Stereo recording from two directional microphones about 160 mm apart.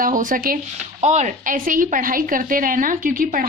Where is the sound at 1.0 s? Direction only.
45° right (ahead or behind); by 3.5 s 60° right (ahead or behind).